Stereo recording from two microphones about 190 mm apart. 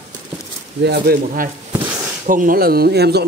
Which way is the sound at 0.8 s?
55° right (ahead or behind).